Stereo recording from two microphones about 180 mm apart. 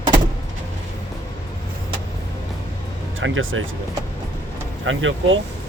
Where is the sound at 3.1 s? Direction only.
90° right.